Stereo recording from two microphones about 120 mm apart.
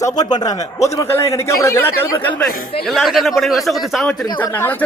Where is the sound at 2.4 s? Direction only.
Centre (ahead or behind).